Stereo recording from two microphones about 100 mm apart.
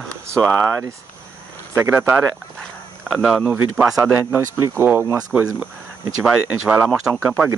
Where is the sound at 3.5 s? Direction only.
20° right (ahead or behind).